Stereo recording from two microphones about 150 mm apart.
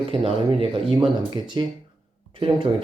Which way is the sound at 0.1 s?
40° right (ahead or behind).